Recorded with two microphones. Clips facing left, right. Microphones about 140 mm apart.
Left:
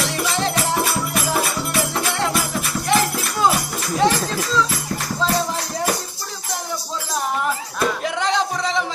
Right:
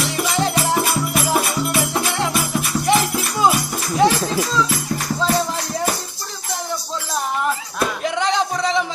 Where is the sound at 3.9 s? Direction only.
10° right (ahead or behind).